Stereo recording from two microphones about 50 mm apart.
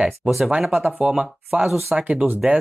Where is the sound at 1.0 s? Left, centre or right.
Right.